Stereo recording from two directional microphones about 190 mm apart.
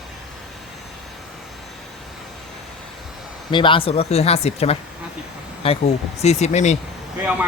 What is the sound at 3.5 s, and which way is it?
Speech, 25° left (ahead or behind).